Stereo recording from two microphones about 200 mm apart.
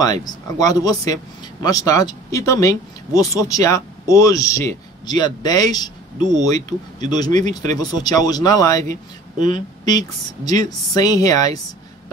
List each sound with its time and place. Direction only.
0.0 s a woman's voice: 20° left (ahead or behind)